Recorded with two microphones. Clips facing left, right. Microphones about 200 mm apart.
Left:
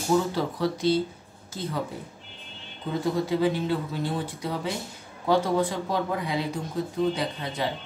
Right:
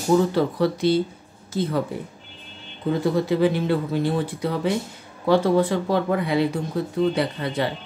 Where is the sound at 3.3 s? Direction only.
65° right (ahead or behind).